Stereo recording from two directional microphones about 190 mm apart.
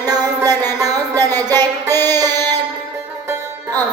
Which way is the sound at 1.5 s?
10° left (ahead or behind).